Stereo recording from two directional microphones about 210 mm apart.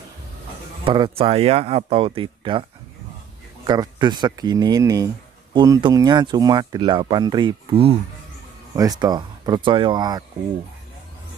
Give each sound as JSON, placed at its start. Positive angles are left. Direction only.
{"t": 0.8, "sound": "speech", "side_deg": -25}
{"t": 3.6, "sound": "speech", "side_deg": -20}